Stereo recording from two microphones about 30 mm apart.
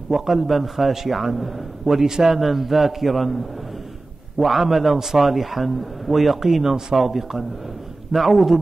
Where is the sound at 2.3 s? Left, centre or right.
Centre.